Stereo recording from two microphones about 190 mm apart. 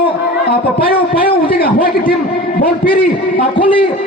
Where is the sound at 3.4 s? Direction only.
30° left (ahead or behind).